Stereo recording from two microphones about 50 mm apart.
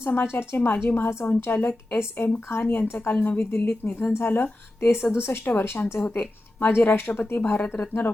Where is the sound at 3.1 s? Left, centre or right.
Left.